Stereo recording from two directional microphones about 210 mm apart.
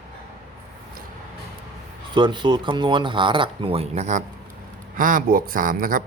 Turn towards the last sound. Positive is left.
turn(degrees=-40)  # may be behind; listen again after turning